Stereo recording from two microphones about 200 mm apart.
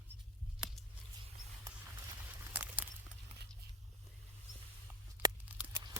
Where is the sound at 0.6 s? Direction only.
5° right (ahead or behind).